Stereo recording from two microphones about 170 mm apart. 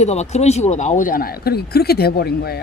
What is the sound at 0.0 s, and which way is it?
Speech, 40° left (ahead or behind).